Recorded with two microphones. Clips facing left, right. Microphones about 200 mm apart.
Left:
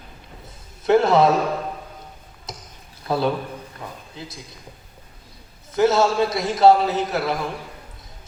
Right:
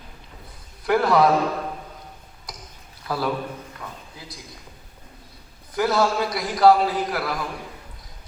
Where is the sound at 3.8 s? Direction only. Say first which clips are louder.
Left 2 dB; 20° left (ahead or behind).